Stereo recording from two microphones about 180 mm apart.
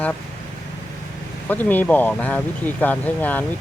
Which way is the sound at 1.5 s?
10° left (ahead or behind).